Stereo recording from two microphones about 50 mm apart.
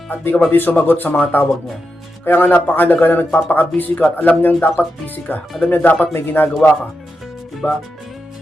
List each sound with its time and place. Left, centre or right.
0.1 s a man's voice: left
7.6 s speech: left